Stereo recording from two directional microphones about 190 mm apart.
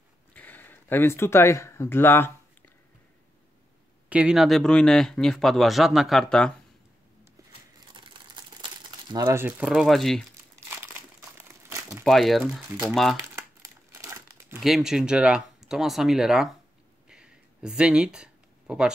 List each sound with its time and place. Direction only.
0.3 s speech: 10° left (ahead or behind)
4.1 s speech: 5° right (ahead or behind)
7.9 s crumpling: 25° right (ahead or behind)
9.1 s speech: 15° right (ahead or behind); by 10.2 s centre (ahead or behind)
11.3 s crumpling: 15° right (ahead or behind)
12.0 s speech: centre (ahead or behind)
13.2 s crumpling: 15° right (ahead or behind)
14.6 s speech: centre (ahead or behind)
17.1 s a sound: 5° right (ahead or behind)